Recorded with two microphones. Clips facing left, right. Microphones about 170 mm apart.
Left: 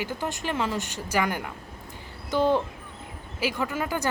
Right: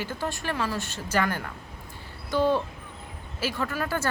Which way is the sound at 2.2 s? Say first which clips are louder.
Left 1 dB; 20° left (ahead or behind).